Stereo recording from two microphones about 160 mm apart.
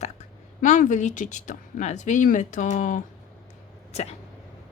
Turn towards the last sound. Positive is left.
turn(degrees=40)  # may be behind; listen again after turning